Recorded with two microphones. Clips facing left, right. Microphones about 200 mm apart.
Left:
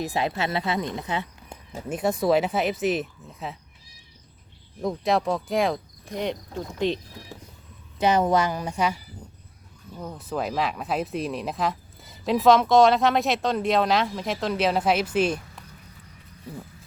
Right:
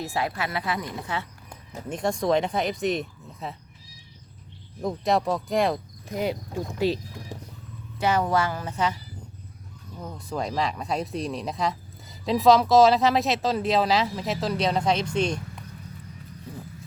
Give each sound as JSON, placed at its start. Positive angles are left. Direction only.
{"t": 0.0, "sound": "speech", "side_deg": 20}
{"t": 1.9, "sound": "speech", "side_deg": 5}
{"t": 4.8, "sound": "speech", "side_deg": 0}
{"t": 7.9, "sound": "a woman's voice", "side_deg": 20}
{"t": 10.0, "sound": "speech", "side_deg": 0}